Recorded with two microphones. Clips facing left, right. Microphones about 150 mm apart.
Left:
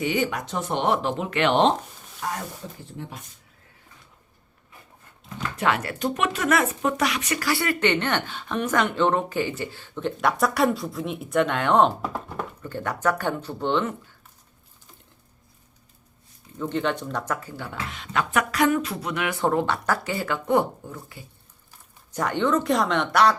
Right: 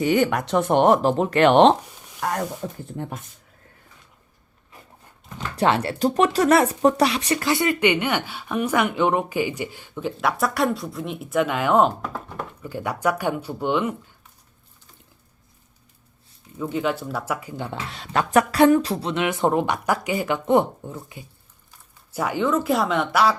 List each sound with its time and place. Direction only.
0.0 s speech: 50° right (ahead or behind)
2.2 s speech: 75° right (ahead or behind)
2.6 s speech: 55° right (ahead or behind)
5.5 s speech: 30° right (ahead or behind); by 13.9 s 10° right (ahead or behind)
16.6 s speech: 5° right (ahead or behind)
17.6 s speech: 30° right (ahead or behind)
22.1 s speech: 5° right (ahead or behind)